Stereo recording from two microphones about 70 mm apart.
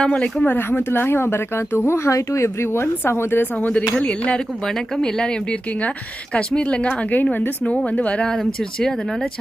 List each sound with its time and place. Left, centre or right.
0.0 s speech: centre
0.5 s a woman's voice: left
1.9 s a woman's voice: left; by 9.3 s centre